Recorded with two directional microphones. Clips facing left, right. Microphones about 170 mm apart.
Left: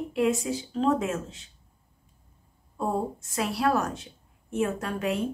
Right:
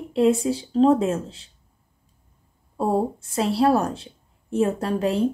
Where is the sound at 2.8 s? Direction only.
30° right (ahead or behind).